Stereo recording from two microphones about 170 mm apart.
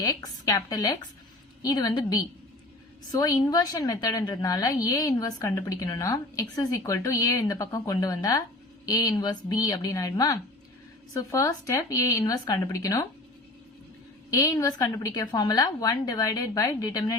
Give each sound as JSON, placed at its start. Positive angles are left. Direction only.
{"t": 0.0, "sound": "a woman's voice", "side_deg": 20}
{"t": 14.3, "sound": "a woman's voice", "side_deg": 20}